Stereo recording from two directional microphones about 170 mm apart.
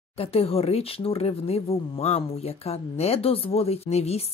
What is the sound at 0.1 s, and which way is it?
Speech, 35° left (ahead or behind).